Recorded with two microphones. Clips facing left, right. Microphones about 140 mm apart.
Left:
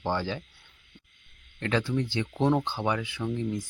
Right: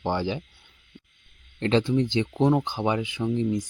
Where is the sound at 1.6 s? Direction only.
25° right (ahead or behind).